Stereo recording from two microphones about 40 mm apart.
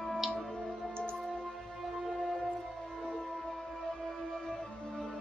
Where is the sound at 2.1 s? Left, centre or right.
Centre.